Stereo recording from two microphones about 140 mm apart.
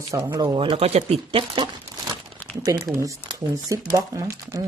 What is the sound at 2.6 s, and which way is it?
Speech, 25° right (ahead or behind).